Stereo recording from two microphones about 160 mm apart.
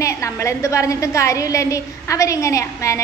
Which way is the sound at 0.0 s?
20° left (ahead or behind).